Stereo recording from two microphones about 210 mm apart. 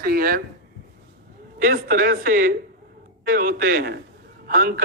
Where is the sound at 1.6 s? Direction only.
45° right (ahead or behind).